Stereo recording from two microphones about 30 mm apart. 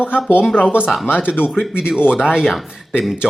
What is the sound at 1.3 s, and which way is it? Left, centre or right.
Speech, left.